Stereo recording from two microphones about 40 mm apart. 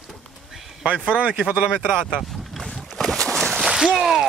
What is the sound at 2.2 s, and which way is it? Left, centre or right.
Boat, centre.